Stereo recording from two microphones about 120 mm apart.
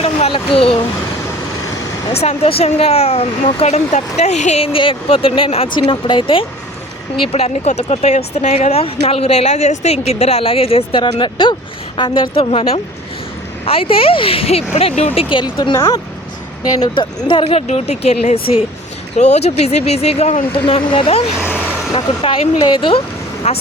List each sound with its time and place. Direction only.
0.0 s speech: 55° left (ahead or behind)
2.1 s speech: 55° left (ahead or behind)
4.6 s speech: 45° left (ahead or behind)
7.3 s speech: 60° left (ahead or behind)
15.6 s speech: 35° left (ahead or behind)
17.2 s speech: 50° left (ahead or behind)
19.1 s speech: 70° left (ahead or behind)
20.5 s speech: 50° left (ahead or behind)
22.1 s a sound: 60° left (ahead or behind)
22.7 s speech: 45° left (ahead or behind)
23.4 s speech: 60° left (ahead or behind)